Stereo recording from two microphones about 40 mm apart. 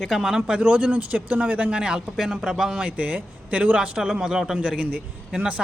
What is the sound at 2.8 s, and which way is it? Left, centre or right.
Speech, right.